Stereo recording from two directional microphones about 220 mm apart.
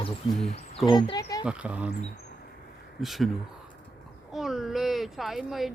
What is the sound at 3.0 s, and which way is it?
Speech, centre (ahead or behind).